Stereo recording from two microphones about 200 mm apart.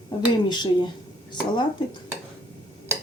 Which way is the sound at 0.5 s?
20° left (ahead or behind).